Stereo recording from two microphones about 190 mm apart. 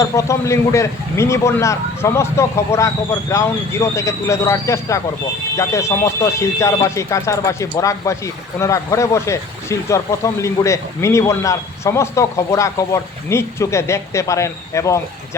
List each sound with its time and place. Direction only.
0.0 s speech: 15° left (ahead or behind)